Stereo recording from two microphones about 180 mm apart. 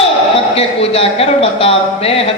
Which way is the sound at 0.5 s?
35° left (ahead or behind).